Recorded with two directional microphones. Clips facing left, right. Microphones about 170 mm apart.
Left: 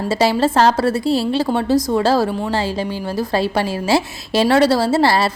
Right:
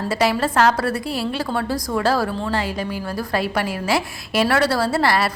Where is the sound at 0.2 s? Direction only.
30° left (ahead or behind).